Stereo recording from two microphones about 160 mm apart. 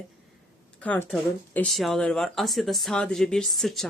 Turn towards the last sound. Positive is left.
turn(degrees=0)  # may be behind; listen again after turning